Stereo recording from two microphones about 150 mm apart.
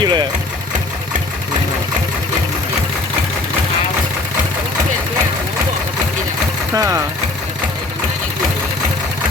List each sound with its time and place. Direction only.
0.0 s vehicle: 30° right (ahead or behind)
6.7 s speech: 20° right (ahead or behind)